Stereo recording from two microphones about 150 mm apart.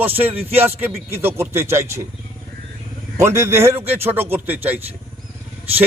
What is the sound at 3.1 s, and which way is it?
A man's voice, 20° right (ahead or behind).